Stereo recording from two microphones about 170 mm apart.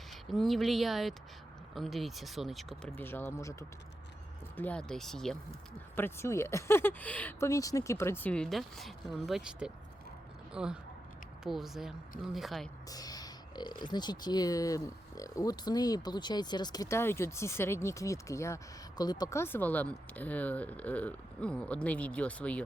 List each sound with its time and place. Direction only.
0.1 s speech: centre (ahead or behind)
6.0 s speech: 15° left (ahead or behind)
12.9 s speech: 20° left (ahead or behind)